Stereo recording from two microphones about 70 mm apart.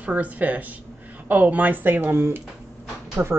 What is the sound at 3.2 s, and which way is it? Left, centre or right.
Speech, right.